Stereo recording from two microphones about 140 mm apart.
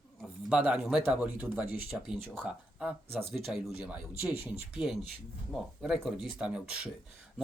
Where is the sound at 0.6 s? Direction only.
5° right (ahead or behind).